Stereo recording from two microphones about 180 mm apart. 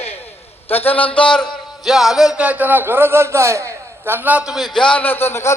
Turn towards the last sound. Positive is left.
turn(degrees=15)  # may be behind; listen again after turning